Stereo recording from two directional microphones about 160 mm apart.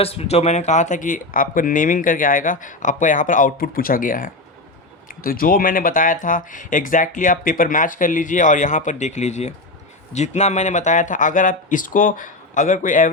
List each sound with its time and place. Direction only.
0.0 s speech: 40° left (ahead or behind); by 13.1 s 55° left (ahead or behind)